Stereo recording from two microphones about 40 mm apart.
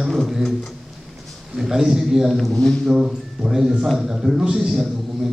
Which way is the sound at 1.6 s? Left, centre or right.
Centre.